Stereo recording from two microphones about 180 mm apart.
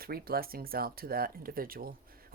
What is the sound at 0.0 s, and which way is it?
Speech, 55° right (ahead or behind).